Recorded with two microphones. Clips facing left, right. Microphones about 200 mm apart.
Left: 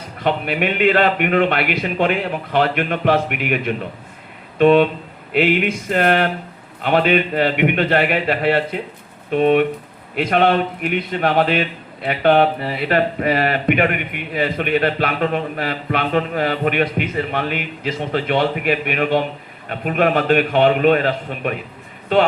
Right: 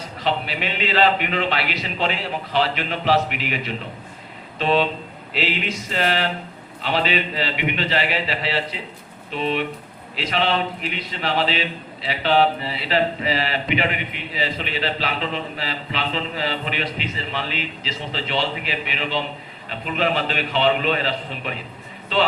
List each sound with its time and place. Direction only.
0.2 s a man's voice: 55° left (ahead or behind)